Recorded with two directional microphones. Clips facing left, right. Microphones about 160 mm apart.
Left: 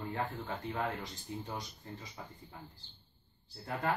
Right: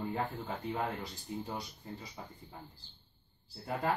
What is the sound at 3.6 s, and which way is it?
Speech, 10° right (ahead or behind).